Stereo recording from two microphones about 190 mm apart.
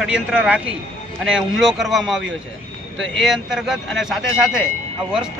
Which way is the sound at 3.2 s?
Centre (ahead or behind).